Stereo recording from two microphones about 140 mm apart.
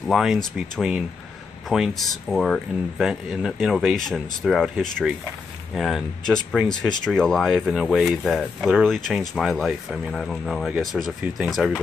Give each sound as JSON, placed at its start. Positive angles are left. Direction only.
{"t": 0.1, "sound": "speech", "side_deg": 0}